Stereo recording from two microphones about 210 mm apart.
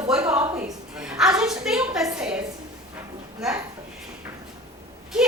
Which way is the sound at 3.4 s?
Centre (ahead or behind).